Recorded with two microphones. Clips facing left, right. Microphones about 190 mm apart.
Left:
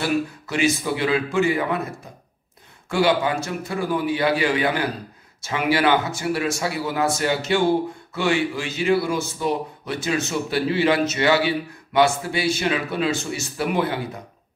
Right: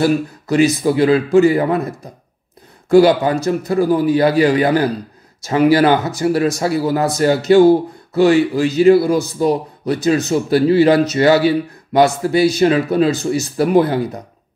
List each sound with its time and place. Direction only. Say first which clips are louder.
0.0 s a man's voice: right 7 dB; 40° right (ahead or behind)
2.9 s a man's voice: right 9 dB; 40° right (ahead or behind)